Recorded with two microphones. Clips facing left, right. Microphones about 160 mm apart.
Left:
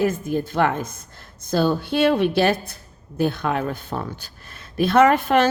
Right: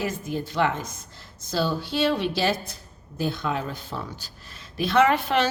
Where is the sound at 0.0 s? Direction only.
50° left (ahead or behind).